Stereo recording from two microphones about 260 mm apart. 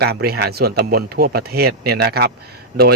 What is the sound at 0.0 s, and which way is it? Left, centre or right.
Speech, right.